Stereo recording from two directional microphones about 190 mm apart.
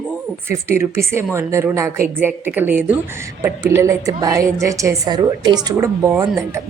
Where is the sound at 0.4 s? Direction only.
15° right (ahead or behind).